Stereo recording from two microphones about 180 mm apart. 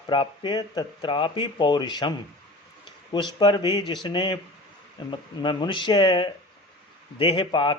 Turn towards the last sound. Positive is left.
turn(degrees=25)  # may be behind; listen again after turning